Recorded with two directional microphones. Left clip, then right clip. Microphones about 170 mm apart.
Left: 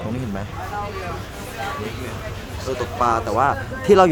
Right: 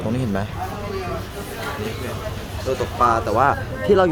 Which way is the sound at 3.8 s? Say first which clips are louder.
Left 3 dB; 15° left (ahead or behind).